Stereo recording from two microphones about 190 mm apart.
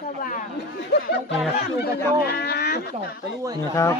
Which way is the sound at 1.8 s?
55° left (ahead or behind).